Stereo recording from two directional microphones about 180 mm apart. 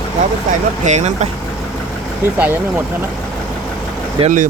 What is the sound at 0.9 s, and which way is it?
Speech, 40° right (ahead or behind).